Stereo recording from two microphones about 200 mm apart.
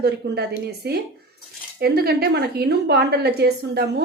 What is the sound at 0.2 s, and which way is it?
Speech, 50° right (ahead or behind).